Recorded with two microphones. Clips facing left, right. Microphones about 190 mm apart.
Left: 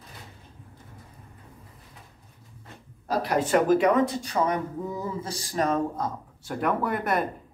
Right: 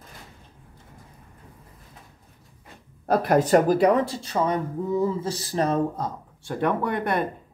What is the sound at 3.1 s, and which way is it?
Speech, 45° right (ahead or behind).